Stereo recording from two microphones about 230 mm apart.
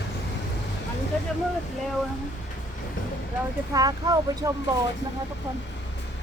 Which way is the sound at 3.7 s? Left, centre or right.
Centre.